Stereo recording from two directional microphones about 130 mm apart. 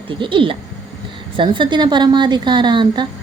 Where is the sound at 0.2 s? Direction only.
40° right (ahead or behind).